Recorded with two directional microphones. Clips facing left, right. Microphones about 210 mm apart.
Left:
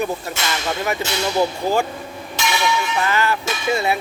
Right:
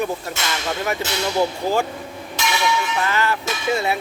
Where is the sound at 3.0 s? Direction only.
10° left (ahead or behind).